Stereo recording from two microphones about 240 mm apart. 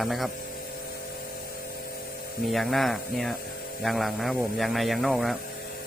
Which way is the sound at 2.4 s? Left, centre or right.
Centre.